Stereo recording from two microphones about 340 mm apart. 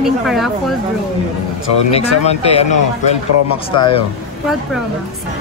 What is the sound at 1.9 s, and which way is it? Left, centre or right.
Speech, centre.